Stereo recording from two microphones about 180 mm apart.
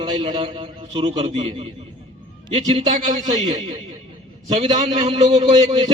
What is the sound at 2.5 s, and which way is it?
A man's voice, 35° right (ahead or behind).